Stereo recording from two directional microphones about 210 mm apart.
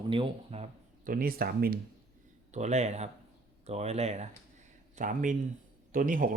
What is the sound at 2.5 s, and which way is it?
A man's voice, 35° right (ahead or behind).